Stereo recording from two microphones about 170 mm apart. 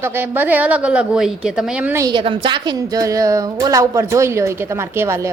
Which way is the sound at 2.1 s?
30° right (ahead or behind).